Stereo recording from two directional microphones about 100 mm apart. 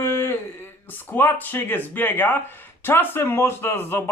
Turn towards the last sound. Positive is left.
turn(degrees=25)  # may be behind; listen again after turning